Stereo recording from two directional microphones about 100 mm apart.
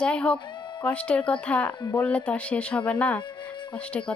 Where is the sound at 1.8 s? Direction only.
35° left (ahead or behind).